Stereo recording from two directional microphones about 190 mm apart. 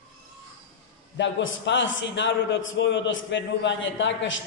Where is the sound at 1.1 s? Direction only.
70° left (ahead or behind).